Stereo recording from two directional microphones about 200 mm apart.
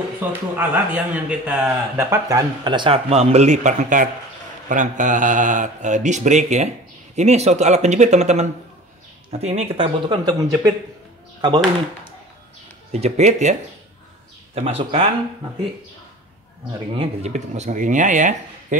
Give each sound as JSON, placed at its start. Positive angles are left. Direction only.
{"t": 0.2, "sound": "a man's voice", "side_deg": -10}
{"t": 16.9, "sound": "speech", "side_deg": -30}